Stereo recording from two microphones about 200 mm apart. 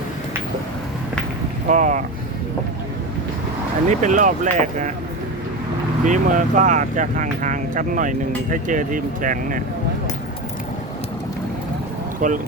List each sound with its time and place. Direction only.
1.6 s speech: 40° right (ahead or behind)
3.8 s speech: 40° right (ahead or behind)
6.1 s speech: 40° right (ahead or behind)
12.2 s speech: 45° right (ahead or behind)